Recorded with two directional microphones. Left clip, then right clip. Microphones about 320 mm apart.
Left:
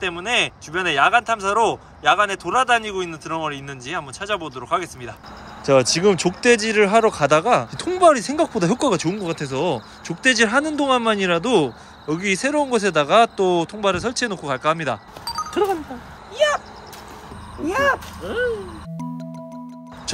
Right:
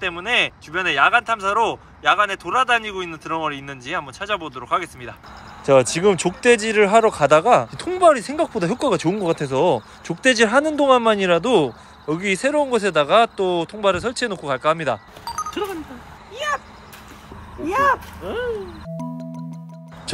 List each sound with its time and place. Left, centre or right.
0.0 s speech: centre
15.5 s speech: left
17.6 s speech: centre